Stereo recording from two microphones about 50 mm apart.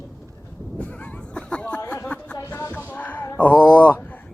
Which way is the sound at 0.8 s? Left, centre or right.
Left.